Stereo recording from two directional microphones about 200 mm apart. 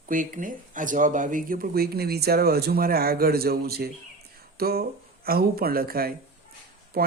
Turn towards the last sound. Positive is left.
turn(degrees=-50)  # may be behind; listen again after turning